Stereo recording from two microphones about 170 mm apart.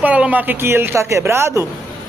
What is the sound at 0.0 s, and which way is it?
Speech, 10° right (ahead or behind).